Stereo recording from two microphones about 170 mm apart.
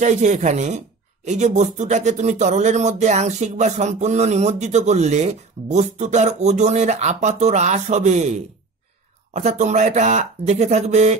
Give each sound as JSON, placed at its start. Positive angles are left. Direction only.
{"t": 0.0, "sound": "speech", "side_deg": -45}